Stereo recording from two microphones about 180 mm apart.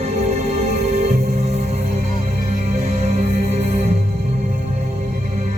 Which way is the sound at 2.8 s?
35° right (ahead or behind).